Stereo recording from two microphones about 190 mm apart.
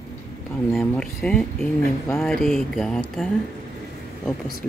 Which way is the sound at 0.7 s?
5° left (ahead or behind).